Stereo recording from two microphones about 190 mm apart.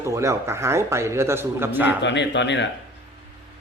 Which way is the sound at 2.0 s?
70° left (ahead or behind).